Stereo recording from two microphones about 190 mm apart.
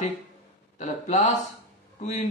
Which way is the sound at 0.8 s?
40° left (ahead or behind).